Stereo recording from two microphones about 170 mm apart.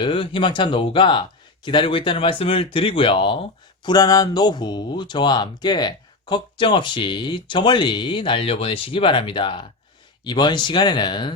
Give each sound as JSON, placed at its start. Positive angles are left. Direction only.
{"t": 0.0, "sound": "speech", "side_deg": 30}